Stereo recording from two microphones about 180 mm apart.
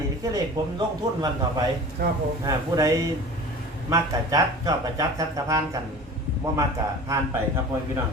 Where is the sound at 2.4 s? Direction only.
20° right (ahead or behind).